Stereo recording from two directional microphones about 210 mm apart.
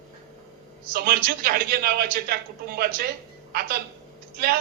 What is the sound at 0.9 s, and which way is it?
A man's voice, 45° right (ahead or behind).